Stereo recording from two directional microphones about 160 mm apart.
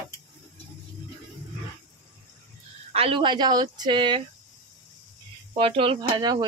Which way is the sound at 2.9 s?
35° right (ahead or behind).